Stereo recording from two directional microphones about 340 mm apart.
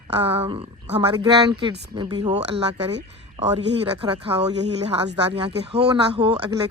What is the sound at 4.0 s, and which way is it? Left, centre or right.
Speech, centre.